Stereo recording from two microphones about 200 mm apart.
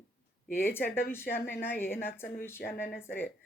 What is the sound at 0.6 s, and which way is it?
Speech, 10° left (ahead or behind).